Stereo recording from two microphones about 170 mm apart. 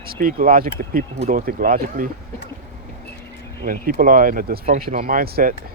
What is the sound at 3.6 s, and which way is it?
Speech, 55° right (ahead or behind).